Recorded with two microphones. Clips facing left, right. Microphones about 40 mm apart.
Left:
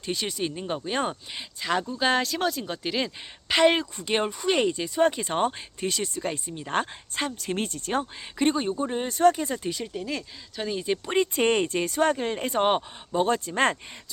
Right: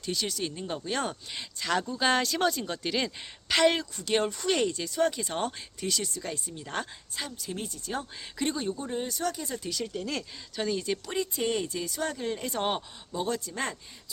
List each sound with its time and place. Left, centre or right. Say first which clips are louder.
0.0 s speech: left 3 dB; left; by 3.1 s centre
3.5 s speech: left 3 dB; left
4.3 s speech: left 3 dB; centre; by 8.0 s left
8.4 s speech: left 7 dB; left
9.8 s speech: left 1 dB; centre
10.8 s speech: left 4 dB; left
11.1 s speech: left 8 dB; left